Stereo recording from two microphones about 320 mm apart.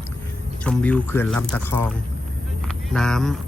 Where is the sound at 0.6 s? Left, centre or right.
Centre.